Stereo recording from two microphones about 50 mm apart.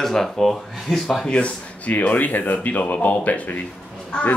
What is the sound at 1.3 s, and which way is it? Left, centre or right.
Speech, left.